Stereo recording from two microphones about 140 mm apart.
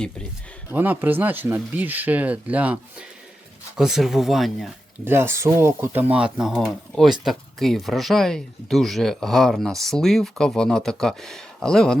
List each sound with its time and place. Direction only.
0.7 s speech: 15° right (ahead or behind)
5.0 s speech: 15° right (ahead or behind); by 11.9 s 5° left (ahead or behind)